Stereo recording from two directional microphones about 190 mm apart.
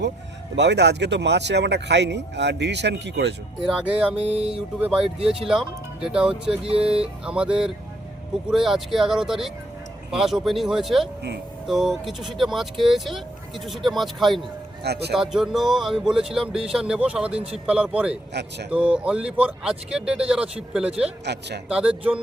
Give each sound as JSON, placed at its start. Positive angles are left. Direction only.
{"t": 0.5, "sound": "speech", "side_deg": -65}
{"t": 3.7, "sound": "speech", "side_deg": -5}
{"t": 4.1, "sound": "music", "side_deg": -30}
{"t": 4.8, "sound": "speech", "side_deg": -5}
{"t": 6.7, "sound": "speech", "side_deg": -30}
{"t": 7.0, "sound": "speech", "side_deg": -5}
{"t": 14.8, "sound": "speech", "side_deg": -60}
{"t": 15.1, "sound": "speech", "side_deg": 0}
{"t": 18.3, "sound": "speech", "side_deg": -60}
{"t": 18.7, "sound": "speech", "side_deg": -5}
{"t": 21.3, "sound": "speech", "side_deg": -60}
{"t": 21.7, "sound": "speech", "side_deg": -5}